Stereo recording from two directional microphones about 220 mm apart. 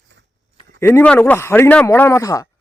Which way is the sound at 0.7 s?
10° left (ahead or behind).